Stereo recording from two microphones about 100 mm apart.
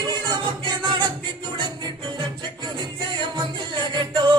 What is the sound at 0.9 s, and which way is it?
Music, 50° right (ahead or behind).